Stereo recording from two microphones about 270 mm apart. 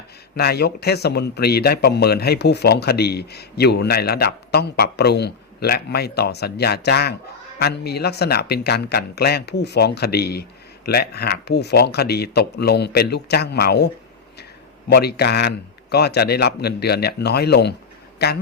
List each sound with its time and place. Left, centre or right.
0.3 s speech: left